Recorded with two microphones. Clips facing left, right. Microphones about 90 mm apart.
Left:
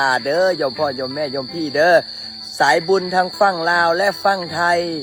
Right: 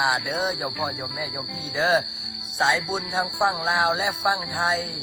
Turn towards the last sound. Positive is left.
turn(degrees=60)  # may be behind; listen again after turning